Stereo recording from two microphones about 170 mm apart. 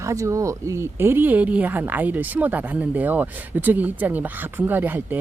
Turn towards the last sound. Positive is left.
turn(degrees=-10)  # may be behind; listen again after turning